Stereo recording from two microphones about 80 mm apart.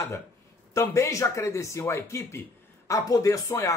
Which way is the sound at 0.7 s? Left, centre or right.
Left.